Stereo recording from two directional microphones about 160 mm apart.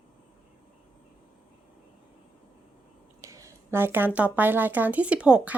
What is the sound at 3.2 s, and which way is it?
Speech, 20° right (ahead or behind).